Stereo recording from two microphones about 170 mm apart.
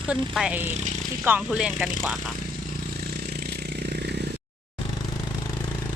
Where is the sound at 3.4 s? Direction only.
75° right (ahead or behind).